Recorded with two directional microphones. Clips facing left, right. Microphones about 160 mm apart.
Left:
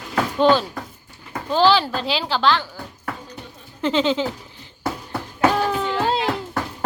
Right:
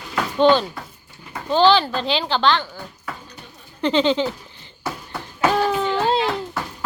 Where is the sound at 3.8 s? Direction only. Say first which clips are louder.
Right 1 dB; 5° left (ahead or behind).